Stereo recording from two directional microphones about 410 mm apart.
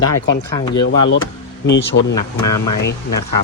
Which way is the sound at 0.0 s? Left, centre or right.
Left.